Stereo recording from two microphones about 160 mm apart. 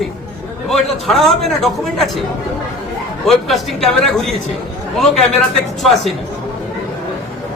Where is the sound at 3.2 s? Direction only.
Centre (ahead or behind).